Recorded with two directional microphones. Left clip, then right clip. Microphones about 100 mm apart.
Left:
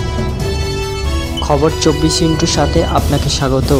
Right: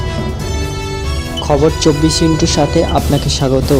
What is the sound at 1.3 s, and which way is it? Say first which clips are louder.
Speech: right 1 dB; centre (ahead or behind).